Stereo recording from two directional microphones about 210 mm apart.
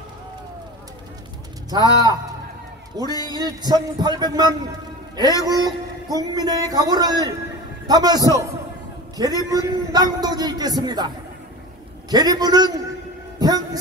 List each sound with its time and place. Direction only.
1.7 s a man's voice: 20° right (ahead or behind)
3.0 s a man's voice: 20° left (ahead or behind)
3.4 s a man's voice: 20° right (ahead or behind)
12.1 s a man's voice: 20° right (ahead or behind)